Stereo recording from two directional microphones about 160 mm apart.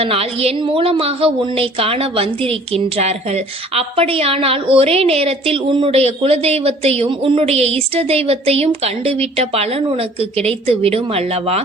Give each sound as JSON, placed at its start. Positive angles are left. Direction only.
{"t": 0.0, "sound": "a woman's voice", "side_deg": -35}